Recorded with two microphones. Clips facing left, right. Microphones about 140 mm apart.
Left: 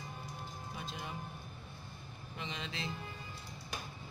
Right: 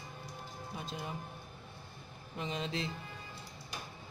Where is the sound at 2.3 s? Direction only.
40° right (ahead or behind).